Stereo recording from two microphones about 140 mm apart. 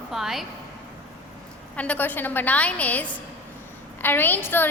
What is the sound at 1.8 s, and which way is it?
A woman's voice, 10° left (ahead or behind).